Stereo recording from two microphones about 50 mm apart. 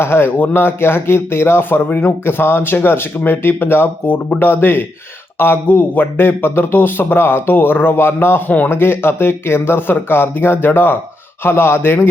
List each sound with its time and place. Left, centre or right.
0.0 s speech: left
0.3 s speech: left
2.2 s speech: left
5.6 s speech: left
8.4 s speech: left
8.7 s speech: left